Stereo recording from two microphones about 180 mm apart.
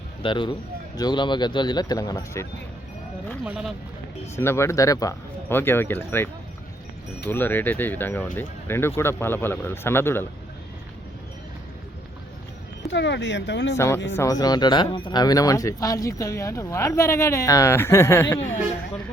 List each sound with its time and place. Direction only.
0.2 s speech: 25° left (ahead or behind)
3.4 s speech: 5° right (ahead or behind)
4.4 s speech: 15° left (ahead or behind)
12.9 s speech: 75° left (ahead or behind)
13.7 s speech: 15° left (ahead or behind)